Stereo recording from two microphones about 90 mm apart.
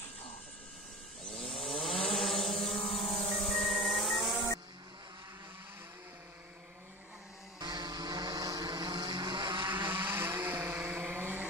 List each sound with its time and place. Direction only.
1.2 s chainsaw: 5° left (ahead or behind)
2.1 s a sound: centre (ahead or behind)
2.9 s vehicle: 90° left
3.4 s music: 5° left (ahead or behind)
7.5 s vehicle: 50° right (ahead or behind)
9.8 s vehicle: 25° right (ahead or behind)